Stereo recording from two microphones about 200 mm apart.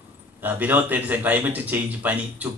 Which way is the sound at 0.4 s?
10° right (ahead or behind).